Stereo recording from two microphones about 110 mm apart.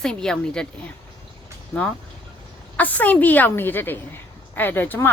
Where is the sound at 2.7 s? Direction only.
15° left (ahead or behind).